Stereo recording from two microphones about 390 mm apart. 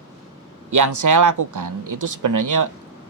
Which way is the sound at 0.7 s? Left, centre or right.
Right.